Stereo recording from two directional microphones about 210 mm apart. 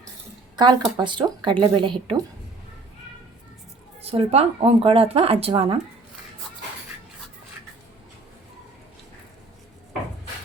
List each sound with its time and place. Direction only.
0.5 s speech: 20° right (ahead or behind)
4.0 s speech: 30° right (ahead or behind)